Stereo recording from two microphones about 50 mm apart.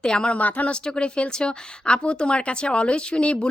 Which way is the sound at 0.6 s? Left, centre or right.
Centre.